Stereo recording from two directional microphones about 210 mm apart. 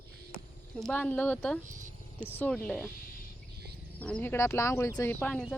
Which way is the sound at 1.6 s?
35° right (ahead or behind).